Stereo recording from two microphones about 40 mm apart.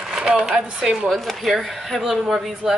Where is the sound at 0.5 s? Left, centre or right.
Centre.